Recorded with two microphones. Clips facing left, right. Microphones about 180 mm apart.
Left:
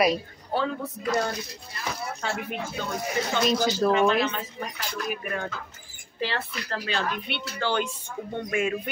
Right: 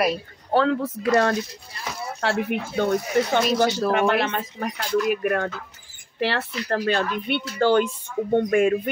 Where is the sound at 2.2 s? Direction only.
65° right (ahead or behind).